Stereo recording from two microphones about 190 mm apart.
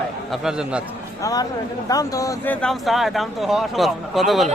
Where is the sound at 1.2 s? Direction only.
20° left (ahead or behind).